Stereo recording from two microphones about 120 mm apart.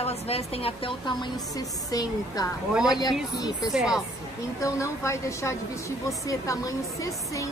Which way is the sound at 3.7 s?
5° right (ahead or behind).